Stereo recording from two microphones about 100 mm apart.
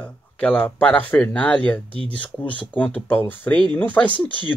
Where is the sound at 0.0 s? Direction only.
10° left (ahead or behind).